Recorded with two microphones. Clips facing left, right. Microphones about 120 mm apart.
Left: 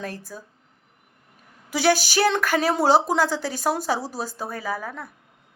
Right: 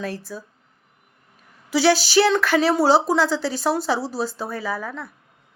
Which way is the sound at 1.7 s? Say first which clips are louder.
Right 4 dB; 45° left (ahead or behind).